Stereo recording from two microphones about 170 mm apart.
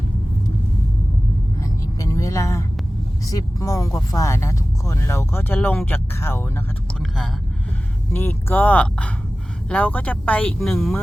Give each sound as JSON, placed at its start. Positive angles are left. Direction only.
{"t": 1.6, "sound": "vehicle", "side_deg": 20}
{"t": 3.2, "sound": "speech", "side_deg": 20}
{"t": 8.1, "sound": "speech", "side_deg": 10}